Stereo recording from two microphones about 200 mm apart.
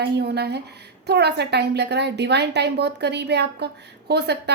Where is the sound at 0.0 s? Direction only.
55° right (ahead or behind).